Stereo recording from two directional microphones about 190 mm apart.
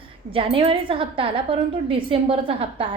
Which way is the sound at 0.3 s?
30° right (ahead or behind).